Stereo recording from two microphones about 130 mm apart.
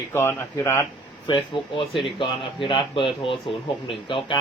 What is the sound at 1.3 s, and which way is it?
Speech, 40° left (ahead or behind).